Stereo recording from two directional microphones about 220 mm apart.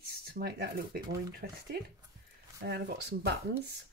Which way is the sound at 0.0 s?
45° right (ahead or behind).